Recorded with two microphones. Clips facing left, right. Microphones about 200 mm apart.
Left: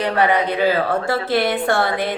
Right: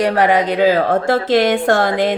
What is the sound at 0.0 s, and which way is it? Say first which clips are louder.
Speech: right 4 dB; 90° right.